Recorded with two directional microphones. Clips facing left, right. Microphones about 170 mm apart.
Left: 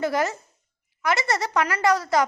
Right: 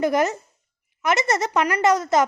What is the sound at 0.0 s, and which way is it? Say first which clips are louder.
A child's voice: right 4 dB; 20° right (ahead or behind).